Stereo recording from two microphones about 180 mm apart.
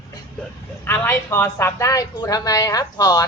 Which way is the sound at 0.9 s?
15° left (ahead or behind).